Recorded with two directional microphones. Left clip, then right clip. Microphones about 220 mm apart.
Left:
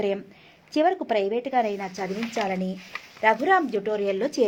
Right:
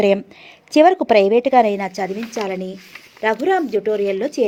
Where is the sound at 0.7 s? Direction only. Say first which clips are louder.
Right 10 dB; 30° right (ahead or behind).